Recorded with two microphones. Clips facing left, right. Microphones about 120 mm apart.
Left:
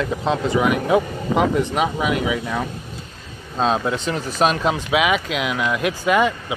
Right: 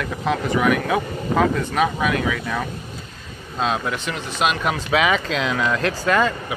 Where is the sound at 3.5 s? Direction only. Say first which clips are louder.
Left 3 dB; 30° left (ahead or behind).